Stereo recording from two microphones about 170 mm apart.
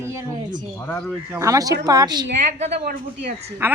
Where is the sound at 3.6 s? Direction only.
15° right (ahead or behind).